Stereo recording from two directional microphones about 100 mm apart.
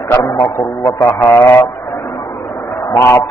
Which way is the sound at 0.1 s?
30° left (ahead or behind).